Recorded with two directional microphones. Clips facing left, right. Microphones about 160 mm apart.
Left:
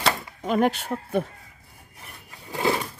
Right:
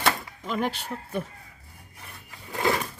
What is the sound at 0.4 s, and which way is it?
Speech, 50° left (ahead or behind).